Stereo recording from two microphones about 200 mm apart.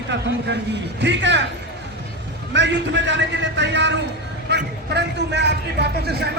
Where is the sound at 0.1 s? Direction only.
60° right (ahead or behind).